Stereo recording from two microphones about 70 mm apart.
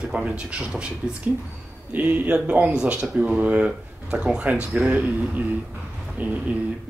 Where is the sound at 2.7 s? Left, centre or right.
Centre.